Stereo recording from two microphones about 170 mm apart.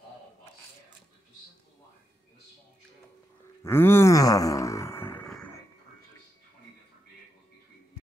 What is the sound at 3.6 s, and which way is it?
Groan, 15° left (ahead or behind).